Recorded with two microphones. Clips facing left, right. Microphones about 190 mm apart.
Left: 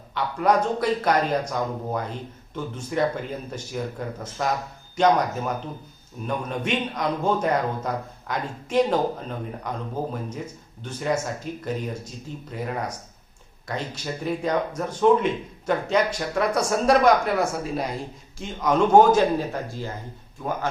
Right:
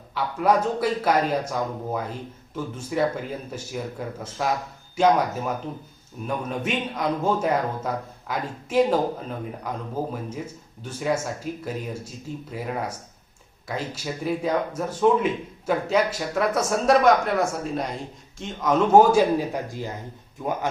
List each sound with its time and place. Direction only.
0.1 s a man's voice: 5° right (ahead or behind)